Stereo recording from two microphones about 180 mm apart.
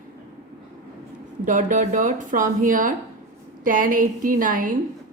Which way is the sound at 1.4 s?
45° right (ahead or behind).